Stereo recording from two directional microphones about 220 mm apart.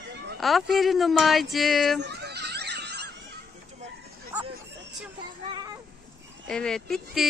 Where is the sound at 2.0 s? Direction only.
50° right (ahead or behind).